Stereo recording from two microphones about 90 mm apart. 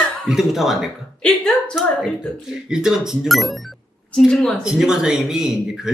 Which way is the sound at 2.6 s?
5° right (ahead or behind).